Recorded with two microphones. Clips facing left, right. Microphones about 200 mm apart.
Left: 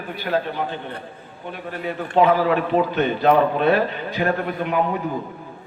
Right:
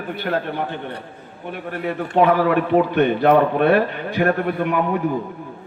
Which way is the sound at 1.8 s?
60° right (ahead or behind).